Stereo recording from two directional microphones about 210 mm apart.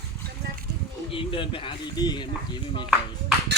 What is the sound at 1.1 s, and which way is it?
Speech, 25° left (ahead or behind).